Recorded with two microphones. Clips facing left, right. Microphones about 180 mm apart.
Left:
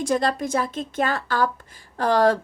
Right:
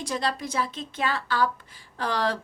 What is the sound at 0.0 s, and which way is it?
A woman's voice, 50° left (ahead or behind).